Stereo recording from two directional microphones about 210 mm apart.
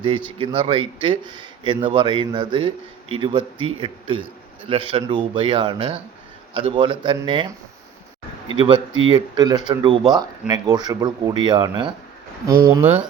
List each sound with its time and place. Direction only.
0.3 s speech: 25° right (ahead or behind)
8.5 s speech: 25° right (ahead or behind)